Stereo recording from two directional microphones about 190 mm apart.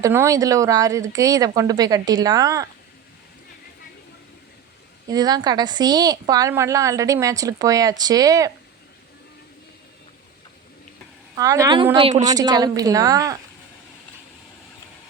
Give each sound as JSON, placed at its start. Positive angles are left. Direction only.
{"t": 0.0, "sound": "a woman's voice", "side_deg": -15}
{"t": 5.0, "sound": "a woman's voice", "side_deg": -20}
{"t": 11.3, "sound": "a woman's voice", "side_deg": -15}
{"t": 11.9, "sound": "a woman's voice", "side_deg": -30}
{"t": 12.2, "sound": "a woman's voice", "side_deg": -20}